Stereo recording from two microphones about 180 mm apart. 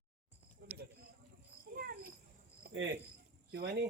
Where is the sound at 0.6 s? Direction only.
60° right (ahead or behind).